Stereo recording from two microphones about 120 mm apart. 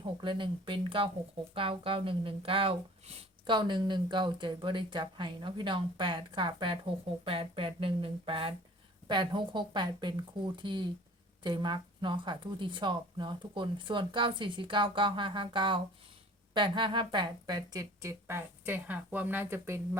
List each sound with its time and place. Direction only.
0.0 s speech: 45° right (ahead or behind)
3.4 s a woman's voice: 40° right (ahead or behind); by 20.0 s 20° right (ahead or behind)